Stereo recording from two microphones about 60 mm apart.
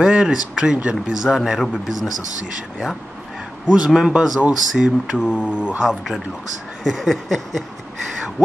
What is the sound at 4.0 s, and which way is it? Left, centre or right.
Speech, centre.